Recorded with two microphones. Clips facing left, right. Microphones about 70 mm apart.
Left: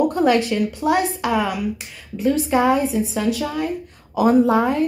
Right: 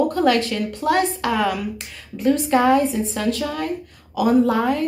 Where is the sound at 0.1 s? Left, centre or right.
Centre.